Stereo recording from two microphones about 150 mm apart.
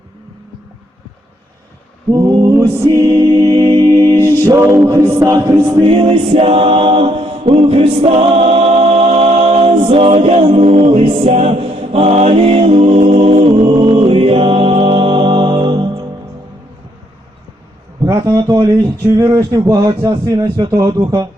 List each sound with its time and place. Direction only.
2.2 s music: 25° right (ahead or behind)
2.7 s speech: 20° right (ahead or behind)
3.6 s music: 25° right (ahead or behind)
5.8 s a capella: 35° right (ahead or behind)
18.0 s speech: 20° right (ahead or behind)